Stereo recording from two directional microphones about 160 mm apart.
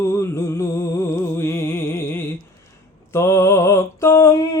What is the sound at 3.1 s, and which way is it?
Mantra, 15° left (ahead or behind).